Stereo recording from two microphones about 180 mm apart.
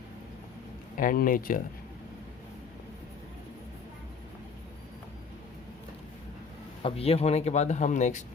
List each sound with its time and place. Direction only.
0.9 s speech: 50° left (ahead or behind)
6.8 s speech: 35° left (ahead or behind)